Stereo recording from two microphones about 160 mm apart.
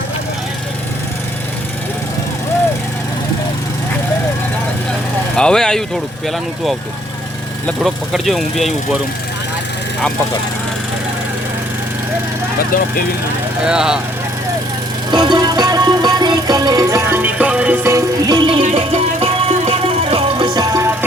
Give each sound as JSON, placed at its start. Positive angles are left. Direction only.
{"t": 5.4, "sound": "speech", "side_deg": 5}
{"t": 7.7, "sound": "speech", "side_deg": 0}
{"t": 13.7, "sound": "speech", "side_deg": -5}
{"t": 15.1, "sound": "music", "side_deg": -25}
{"t": 18.6, "sound": "music", "side_deg": -40}